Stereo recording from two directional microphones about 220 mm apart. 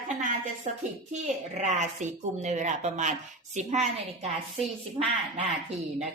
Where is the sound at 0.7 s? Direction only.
30° right (ahead or behind).